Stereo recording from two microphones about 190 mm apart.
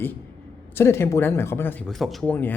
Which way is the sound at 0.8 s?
15° left (ahead or behind).